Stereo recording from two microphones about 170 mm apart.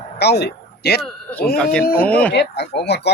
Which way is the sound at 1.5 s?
5° left (ahead or behind).